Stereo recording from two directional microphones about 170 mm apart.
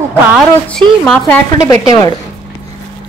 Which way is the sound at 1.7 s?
20° left (ahead or behind).